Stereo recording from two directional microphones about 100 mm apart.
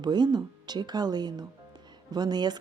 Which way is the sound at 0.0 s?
45° right (ahead or behind).